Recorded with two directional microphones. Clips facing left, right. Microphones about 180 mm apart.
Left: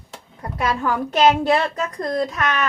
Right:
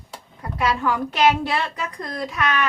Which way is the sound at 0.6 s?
45° left (ahead or behind).